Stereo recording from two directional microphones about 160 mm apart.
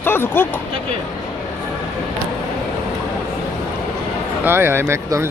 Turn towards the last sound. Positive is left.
turn(degrees=-20)  # may be behind; listen again after turning